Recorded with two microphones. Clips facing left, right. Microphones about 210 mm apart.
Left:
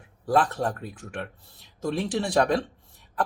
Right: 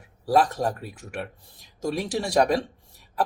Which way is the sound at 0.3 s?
10° right (ahead or behind).